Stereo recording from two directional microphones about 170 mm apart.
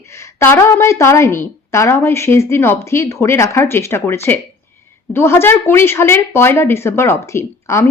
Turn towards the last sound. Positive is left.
turn(degrees=15)  # may be behind; listen again after turning